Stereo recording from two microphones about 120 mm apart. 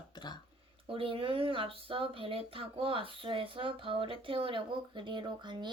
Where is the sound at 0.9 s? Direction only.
50° right (ahead or behind).